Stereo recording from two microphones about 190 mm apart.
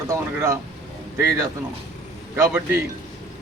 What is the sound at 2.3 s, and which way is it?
Speech, 15° right (ahead or behind).